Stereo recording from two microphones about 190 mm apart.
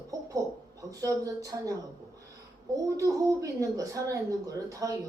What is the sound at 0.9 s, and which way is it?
Speech, 20° right (ahead or behind).